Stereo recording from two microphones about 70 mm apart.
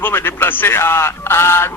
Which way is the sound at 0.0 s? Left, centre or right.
Left.